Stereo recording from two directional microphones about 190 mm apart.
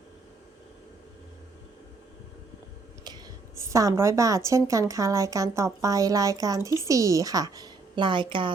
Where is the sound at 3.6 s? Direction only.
15° right (ahead or behind).